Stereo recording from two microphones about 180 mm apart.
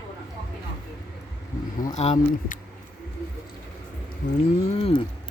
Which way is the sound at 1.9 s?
35° left (ahead or behind).